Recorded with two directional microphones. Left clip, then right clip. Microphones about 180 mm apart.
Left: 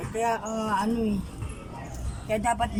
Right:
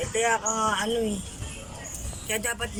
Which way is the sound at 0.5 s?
40° left (ahead or behind).